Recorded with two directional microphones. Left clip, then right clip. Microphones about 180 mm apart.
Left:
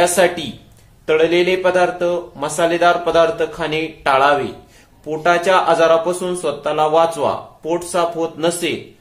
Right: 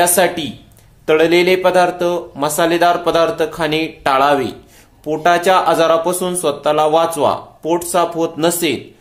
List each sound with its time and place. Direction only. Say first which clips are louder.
0.0 s speech: right 1 dB; 35° right (ahead or behind)